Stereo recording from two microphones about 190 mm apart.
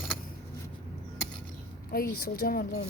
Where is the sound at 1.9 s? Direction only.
50° left (ahead or behind).